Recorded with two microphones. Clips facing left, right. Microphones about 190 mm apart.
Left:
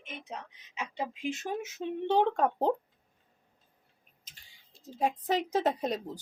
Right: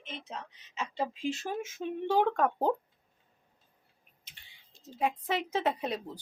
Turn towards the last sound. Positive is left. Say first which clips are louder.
# left 2 dB
turn(degrees=40)  # may be behind; listen again after turning